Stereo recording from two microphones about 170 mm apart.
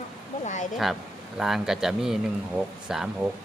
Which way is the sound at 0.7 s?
Centre (ahead or behind).